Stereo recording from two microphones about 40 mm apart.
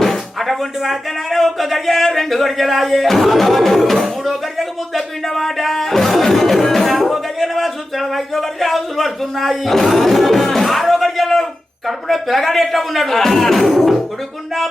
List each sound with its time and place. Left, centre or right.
0.0 s speech: centre